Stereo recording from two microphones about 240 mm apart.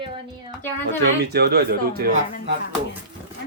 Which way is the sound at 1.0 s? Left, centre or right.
Right.